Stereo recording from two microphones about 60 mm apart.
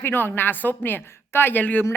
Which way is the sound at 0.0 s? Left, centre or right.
Left.